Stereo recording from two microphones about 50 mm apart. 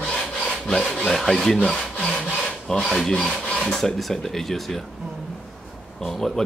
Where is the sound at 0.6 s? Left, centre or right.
Centre.